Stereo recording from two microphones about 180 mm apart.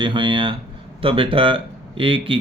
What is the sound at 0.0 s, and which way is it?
Speech, 25° right (ahead or behind).